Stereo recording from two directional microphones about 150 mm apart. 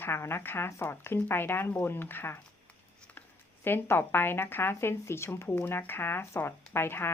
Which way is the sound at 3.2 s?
15° left (ahead or behind).